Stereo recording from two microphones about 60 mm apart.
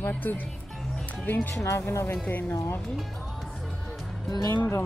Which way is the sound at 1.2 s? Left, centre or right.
Left.